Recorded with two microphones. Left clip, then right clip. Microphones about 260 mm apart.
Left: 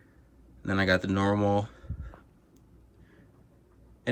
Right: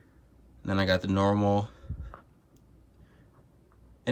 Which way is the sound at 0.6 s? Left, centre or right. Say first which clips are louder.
Left 1 dB; centre.